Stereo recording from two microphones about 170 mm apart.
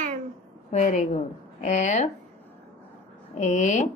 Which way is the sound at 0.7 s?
40° left (ahead or behind).